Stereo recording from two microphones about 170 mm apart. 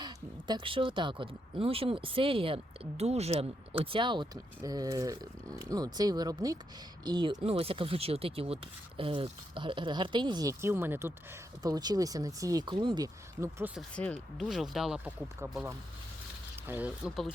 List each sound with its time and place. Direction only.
0.0 s speech: 25° right (ahead or behind)
13.9 s speech: 5° left (ahead or behind)
16.6 s speech: 10° right (ahead or behind)